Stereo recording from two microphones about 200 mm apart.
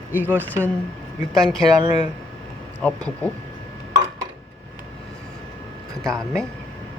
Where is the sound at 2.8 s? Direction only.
5° left (ahead or behind).